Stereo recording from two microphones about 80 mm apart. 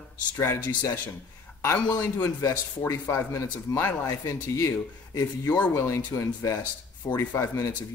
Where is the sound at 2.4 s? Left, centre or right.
Left.